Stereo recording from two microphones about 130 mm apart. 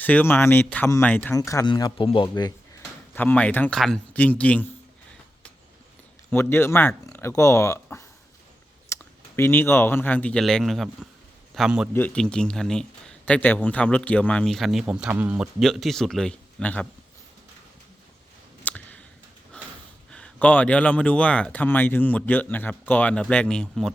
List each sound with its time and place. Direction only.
0.0 s speech: 15° left (ahead or behind)
1.4 s speech: 25° left (ahead or behind)
1.6 s speech: 35° left (ahead or behind)
3.2 s speech: 10° left (ahead or behind)
6.3 s speech: 15° left (ahead or behind); by 11.9 s centre (ahead or behind)
11.9 s speech: 10° left (ahead or behind)
18.6 s clicking: 10° left (ahead or behind)
20.1 s speech: 5° left (ahead or behind)